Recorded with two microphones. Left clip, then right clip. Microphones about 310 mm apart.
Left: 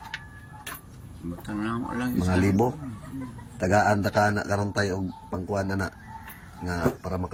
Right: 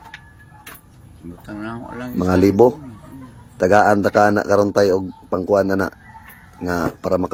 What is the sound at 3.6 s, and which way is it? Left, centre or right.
Speech, centre.